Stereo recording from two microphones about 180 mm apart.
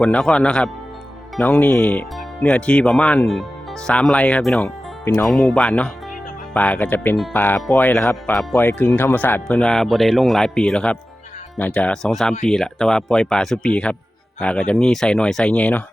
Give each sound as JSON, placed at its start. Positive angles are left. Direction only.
{"t": 0.0, "sound": "speech", "side_deg": 5}